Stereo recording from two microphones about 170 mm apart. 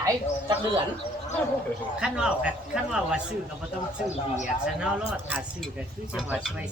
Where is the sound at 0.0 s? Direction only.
25° right (ahead or behind).